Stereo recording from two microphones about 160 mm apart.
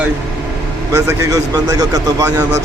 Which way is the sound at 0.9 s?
20° right (ahead or behind).